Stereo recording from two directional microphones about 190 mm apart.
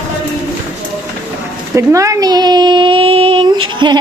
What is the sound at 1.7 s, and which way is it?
Speech, 15° right (ahead or behind).